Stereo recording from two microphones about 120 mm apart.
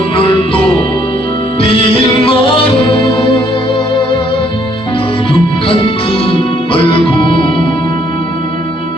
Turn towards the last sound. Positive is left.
turn(degrees=45)  # may be behind; listen again after turning